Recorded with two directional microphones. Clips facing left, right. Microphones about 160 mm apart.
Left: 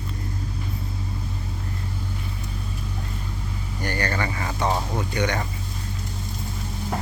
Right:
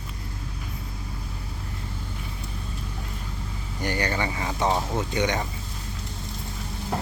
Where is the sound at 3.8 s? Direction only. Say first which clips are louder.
Even; 15° right (ahead or behind).